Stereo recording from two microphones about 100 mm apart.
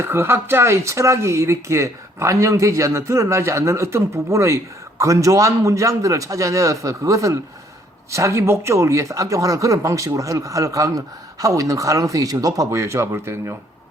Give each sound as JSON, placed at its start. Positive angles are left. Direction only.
{"t": 0.0, "sound": "speech", "side_deg": -25}